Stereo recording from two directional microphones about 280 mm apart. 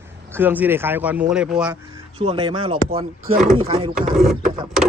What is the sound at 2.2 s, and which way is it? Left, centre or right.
Speech, centre.